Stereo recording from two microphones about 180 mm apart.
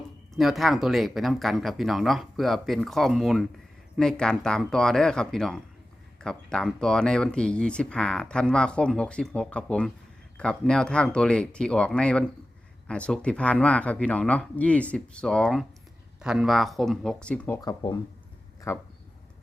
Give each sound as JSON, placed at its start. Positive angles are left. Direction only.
{"t": 0.3, "sound": "speech", "side_deg": 0}
{"t": 17.6, "sound": "speech", "side_deg": 20}